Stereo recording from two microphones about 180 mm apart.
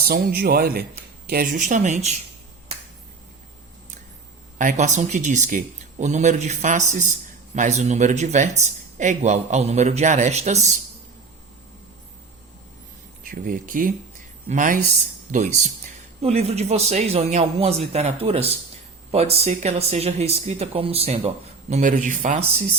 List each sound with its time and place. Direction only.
0.0 s speech: 60° right (ahead or behind); by 2.1 s 40° right (ahead or behind)
4.5 s speech: 45° right (ahead or behind)
13.2 s speech: 50° right (ahead or behind)